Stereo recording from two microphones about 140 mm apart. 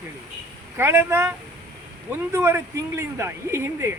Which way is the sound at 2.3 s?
20° right (ahead or behind).